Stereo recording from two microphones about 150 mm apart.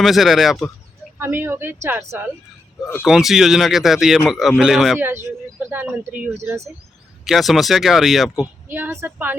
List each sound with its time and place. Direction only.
0.0 s speech: centre (ahead or behind)
1.2 s a woman's voice: 15° right (ahead or behind)
3.1 s speech: centre (ahead or behind)
4.9 s a woman's voice: 15° right (ahead or behind)
7.3 s speech: centre (ahead or behind)
8.7 s a woman's voice: 15° right (ahead or behind)